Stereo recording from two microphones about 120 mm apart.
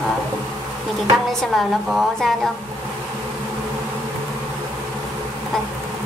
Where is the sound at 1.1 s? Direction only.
Centre (ahead or behind).